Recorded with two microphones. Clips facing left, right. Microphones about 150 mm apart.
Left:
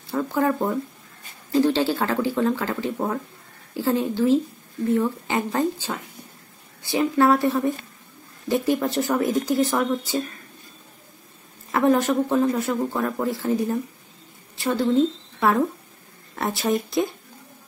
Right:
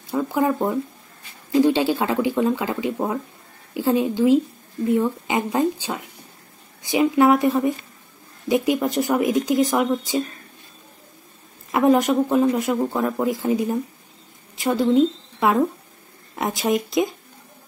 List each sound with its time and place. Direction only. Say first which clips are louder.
0.1 s speech: right 1 dB; 15° right (ahead or behind)
11.7 s a woman's voice: right 2 dB; 15° right (ahead or behind)